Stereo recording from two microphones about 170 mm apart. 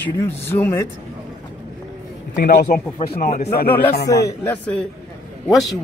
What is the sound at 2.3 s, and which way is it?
Speech, 55° left (ahead or behind).